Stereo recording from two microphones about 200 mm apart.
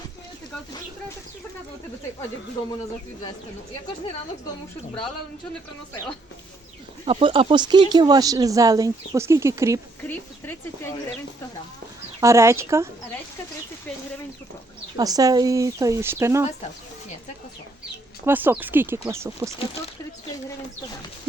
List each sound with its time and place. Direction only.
7.0 s speech: 30° right (ahead or behind)
10.1 s speech: 10° left (ahead or behind)
12.2 s speech: 15° right (ahead or behind)
14.9 s speech: 20° right (ahead or behind)
18.3 s speech: 10° right (ahead or behind)